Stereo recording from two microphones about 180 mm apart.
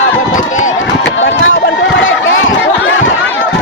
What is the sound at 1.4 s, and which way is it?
Run, 90° left.